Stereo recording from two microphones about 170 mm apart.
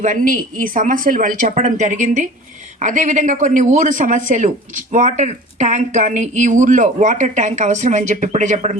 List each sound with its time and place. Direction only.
0.0 s speech: 50° right (ahead or behind)